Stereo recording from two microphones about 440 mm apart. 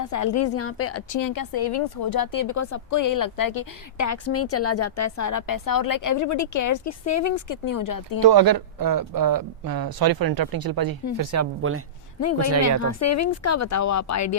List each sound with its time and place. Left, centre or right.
0.0 s a woman's voice: left
8.2 s speech: right
11.2 s speech: right
12.8 s a woman's voice: left